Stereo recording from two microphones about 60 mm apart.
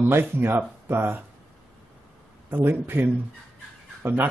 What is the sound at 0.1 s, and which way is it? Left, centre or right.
Speech, right.